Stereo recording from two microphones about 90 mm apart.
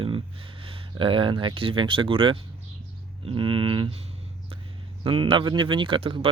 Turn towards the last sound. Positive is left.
turn(degrees=-80)